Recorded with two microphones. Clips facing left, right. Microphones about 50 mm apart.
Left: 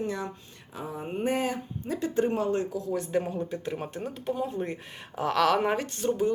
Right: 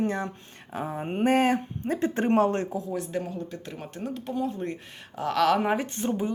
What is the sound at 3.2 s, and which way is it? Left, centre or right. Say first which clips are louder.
Speech: left 2 dB; left.